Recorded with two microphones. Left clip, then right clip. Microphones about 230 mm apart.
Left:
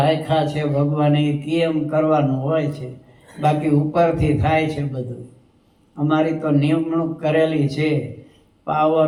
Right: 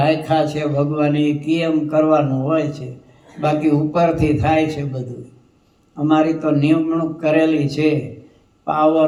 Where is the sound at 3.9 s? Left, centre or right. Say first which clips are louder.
Right 1 dB; right.